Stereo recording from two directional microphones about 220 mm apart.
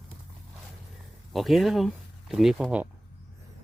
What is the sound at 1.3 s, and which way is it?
Speech, centre (ahead or behind).